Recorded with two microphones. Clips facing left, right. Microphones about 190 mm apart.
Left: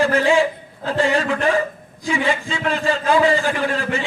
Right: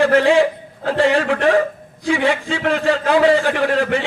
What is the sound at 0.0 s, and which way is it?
A man's voice, 70° right (ahead or behind).